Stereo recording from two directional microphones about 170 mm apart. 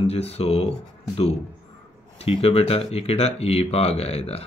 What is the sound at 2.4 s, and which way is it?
Speech, 35° left (ahead or behind).